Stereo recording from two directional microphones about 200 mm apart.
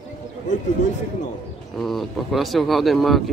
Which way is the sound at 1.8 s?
Centre (ahead or behind).